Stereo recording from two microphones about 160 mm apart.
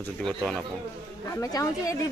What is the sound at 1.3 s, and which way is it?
Speech, 20° left (ahead or behind).